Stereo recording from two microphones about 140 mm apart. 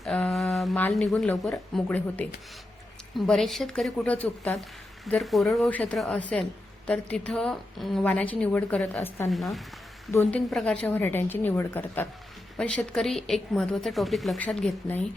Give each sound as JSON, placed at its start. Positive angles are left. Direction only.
{"t": 0.0, "sound": "a sound", "side_deg": 5}
{"t": 0.9, "sound": "a woman's voice", "side_deg": 5}
{"t": 9.3, "sound": "a woman's voice", "side_deg": 0}